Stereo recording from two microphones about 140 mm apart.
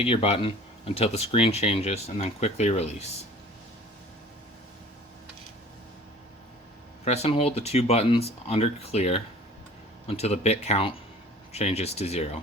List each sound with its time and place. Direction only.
0.0 s speech: 40° left (ahead or behind)
7.0 s speech: 50° left (ahead or behind)